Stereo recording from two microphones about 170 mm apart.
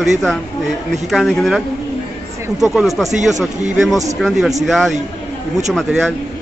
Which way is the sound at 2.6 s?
Centre (ahead or behind).